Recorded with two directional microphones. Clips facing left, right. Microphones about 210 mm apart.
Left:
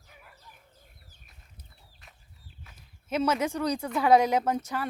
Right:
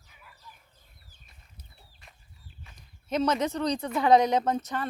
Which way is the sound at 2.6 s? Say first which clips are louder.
Right 1 dB; 5° left (ahead or behind).